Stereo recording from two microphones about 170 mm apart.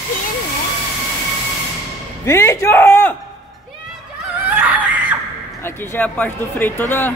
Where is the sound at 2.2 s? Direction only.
15° left (ahead or behind).